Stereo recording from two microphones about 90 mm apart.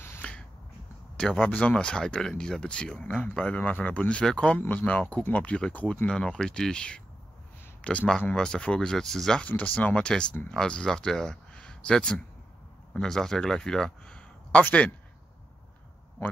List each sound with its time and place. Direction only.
0.2 s finger snapping: 15° left (ahead or behind)
1.1 s speech: 10° left (ahead or behind)
4.6 s speech: 20° left (ahead or behind)
9.5 s speech: 20° left (ahead or behind)
14.6 s a man's voice: 20° left (ahead or behind)